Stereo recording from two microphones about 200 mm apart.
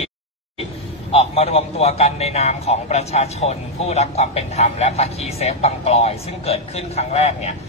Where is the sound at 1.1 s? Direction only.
30° left (ahead or behind).